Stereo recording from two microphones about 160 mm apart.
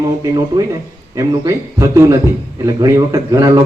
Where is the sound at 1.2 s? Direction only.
20° right (ahead or behind).